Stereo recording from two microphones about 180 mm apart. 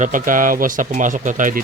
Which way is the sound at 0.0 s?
45° right (ahead or behind).